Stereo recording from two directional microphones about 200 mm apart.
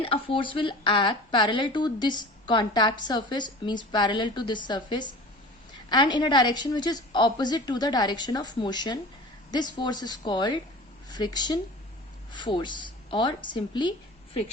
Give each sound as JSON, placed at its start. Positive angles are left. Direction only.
{"t": 0.0, "sound": "speech", "side_deg": 25}